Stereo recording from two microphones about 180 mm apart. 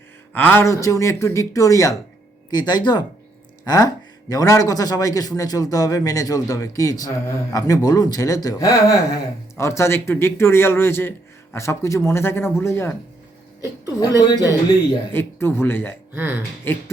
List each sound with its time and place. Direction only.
0.3 s a man's voice: 10° left (ahead or behind)